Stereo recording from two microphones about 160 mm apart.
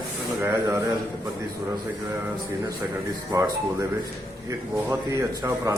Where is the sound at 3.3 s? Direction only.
20° right (ahead or behind).